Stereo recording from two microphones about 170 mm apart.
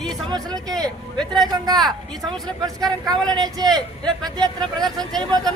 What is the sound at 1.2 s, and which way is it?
Speech, centre (ahead or behind).